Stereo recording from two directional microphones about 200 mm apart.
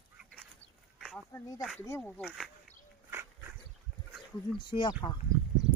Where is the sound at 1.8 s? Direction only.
10° left (ahead or behind).